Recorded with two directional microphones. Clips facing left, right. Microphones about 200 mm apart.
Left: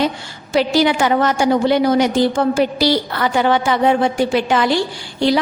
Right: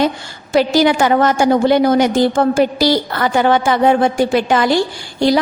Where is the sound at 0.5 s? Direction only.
45° right (ahead or behind).